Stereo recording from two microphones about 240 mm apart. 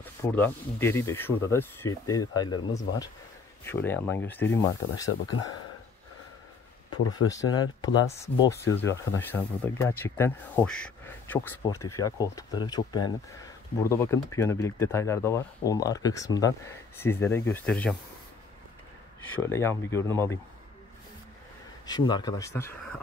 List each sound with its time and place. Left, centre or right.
0.0 s speech: centre
7.2 s speech: centre
19.3 s speech: centre
21.8 s speech: centre